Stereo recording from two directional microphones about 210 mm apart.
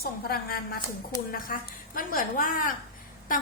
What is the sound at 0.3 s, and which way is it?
A woman's voice, 45° left (ahead or behind).